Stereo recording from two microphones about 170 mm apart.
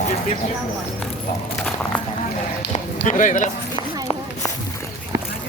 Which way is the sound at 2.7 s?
45° left (ahead or behind).